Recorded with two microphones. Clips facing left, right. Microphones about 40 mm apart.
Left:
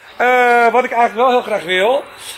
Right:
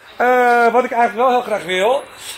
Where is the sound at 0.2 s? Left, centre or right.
Left.